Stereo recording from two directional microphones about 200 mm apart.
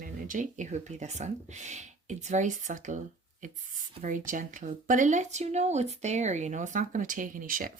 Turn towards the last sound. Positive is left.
turn(degrees=-45)  # may be behind; listen again after turning